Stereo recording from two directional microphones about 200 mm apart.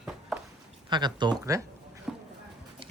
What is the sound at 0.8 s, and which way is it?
Speech, 20° right (ahead or behind).